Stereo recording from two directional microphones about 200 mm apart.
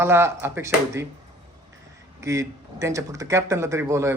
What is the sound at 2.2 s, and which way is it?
A woman's voice, 15° right (ahead or behind).